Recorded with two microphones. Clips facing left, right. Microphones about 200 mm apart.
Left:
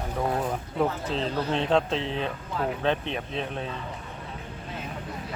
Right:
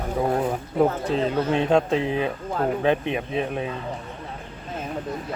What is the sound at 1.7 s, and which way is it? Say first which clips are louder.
Speech: right 4 dB; 10° right (ahead or behind).